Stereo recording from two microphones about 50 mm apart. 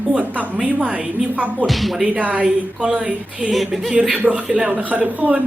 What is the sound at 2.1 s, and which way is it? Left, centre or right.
Speech, right.